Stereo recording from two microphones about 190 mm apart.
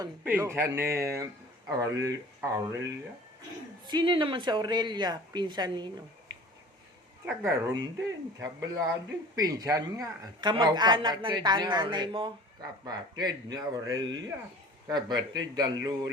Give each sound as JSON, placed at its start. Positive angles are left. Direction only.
{"t": 0.3, "sound": "speech", "side_deg": -10}
{"t": 3.8, "sound": "speech", "side_deg": -25}
{"t": 7.3, "sound": "speech", "side_deg": -15}